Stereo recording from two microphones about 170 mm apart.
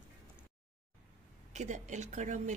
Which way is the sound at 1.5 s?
45° right (ahead or behind).